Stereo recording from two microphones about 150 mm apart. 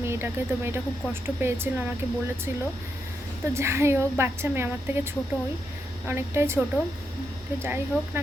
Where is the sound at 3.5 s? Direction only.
20° right (ahead or behind).